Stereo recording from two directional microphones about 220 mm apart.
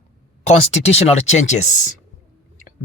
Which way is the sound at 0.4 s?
30° left (ahead or behind).